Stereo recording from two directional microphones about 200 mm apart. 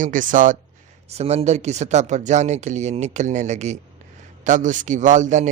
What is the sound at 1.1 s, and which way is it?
A man's voice, 30° right (ahead or behind).